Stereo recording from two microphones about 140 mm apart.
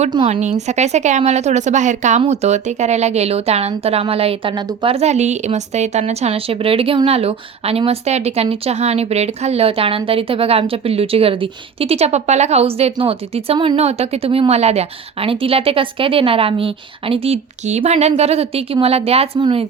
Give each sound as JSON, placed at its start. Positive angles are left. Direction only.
{"t": 0.3, "sound": "a woman's voice", "side_deg": -55}
{"t": 4.9, "sound": "a woman's voice", "side_deg": -55}